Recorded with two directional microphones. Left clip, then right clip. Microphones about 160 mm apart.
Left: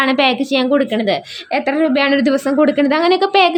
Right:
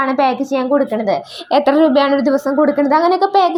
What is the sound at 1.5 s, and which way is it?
Speech, 10° right (ahead or behind).